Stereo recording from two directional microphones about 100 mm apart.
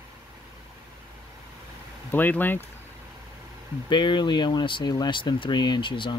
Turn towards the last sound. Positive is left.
turn(degrees=55)  # may be behind; listen again after turning